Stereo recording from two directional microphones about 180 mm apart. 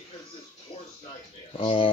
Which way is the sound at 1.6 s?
30° left (ahead or behind).